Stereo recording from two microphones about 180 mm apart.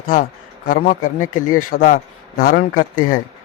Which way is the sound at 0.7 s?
50° left (ahead or behind).